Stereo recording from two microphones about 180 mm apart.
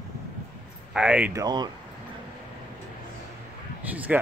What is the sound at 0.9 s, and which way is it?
Speech, 5° right (ahead or behind).